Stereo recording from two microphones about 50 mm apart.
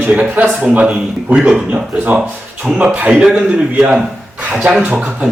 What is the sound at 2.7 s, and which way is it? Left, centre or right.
Speech, right.